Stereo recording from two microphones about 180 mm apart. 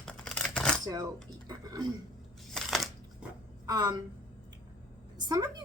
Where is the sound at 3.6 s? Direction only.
20° right (ahead or behind).